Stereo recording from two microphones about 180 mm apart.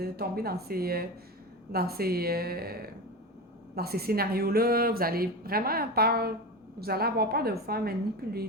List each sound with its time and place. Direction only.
0.0 s a woman's voice: 60° right (ahead or behind)